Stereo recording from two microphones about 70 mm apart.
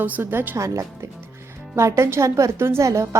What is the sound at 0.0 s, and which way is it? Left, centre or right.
Speech, right.